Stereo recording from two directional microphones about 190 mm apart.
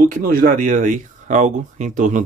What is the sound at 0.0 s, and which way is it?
Speech, 50° right (ahead or behind).